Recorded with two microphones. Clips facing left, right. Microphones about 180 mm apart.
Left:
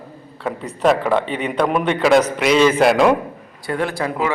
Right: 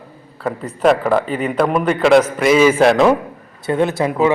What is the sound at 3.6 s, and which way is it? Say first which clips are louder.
Speech: right 5 dB; 20° right (ahead or behind).